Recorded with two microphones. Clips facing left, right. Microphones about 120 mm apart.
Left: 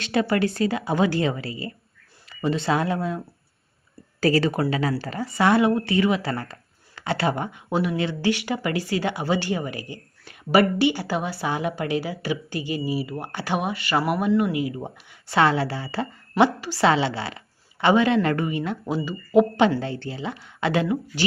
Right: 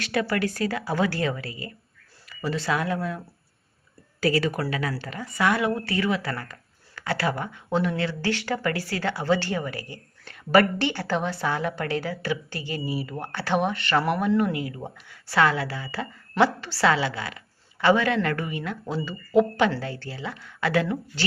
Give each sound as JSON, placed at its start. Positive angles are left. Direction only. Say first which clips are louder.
{"t": 0.0, "sound": "a woman's voice", "louder": "left 3 dB", "side_deg": 25}
{"t": 4.2, "sound": "speech", "louder": "left 3 dB", "side_deg": 35}
{"t": 4.5, "sound": "speech", "louder": "left 5 dB", "side_deg": 25}
{"t": 16.4, "sound": "a woman's voice", "louder": "left 2 dB", "side_deg": 15}